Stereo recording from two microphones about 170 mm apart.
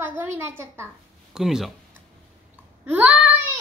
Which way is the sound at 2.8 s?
10° right (ahead or behind).